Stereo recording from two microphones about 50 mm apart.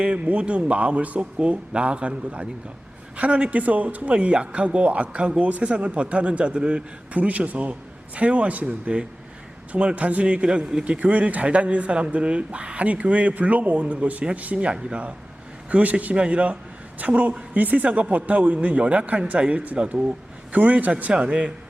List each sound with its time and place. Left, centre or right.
0.0 s speech: right
10.9 s speech: right